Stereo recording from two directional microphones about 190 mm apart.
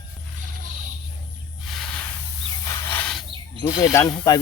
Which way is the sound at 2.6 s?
15° left (ahead or behind).